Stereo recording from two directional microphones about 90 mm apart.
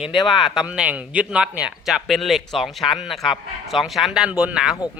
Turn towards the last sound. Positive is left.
turn(degrees=-5)  # may be behind; listen again after turning